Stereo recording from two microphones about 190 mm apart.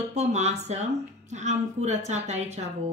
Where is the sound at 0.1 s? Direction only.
35° right (ahead or behind).